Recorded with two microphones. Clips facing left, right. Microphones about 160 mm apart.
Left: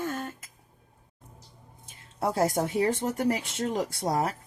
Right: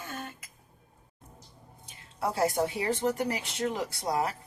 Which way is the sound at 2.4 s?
45° left (ahead or behind).